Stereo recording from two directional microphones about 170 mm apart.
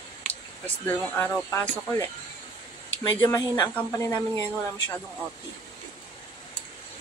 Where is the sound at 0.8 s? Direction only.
15° left (ahead or behind).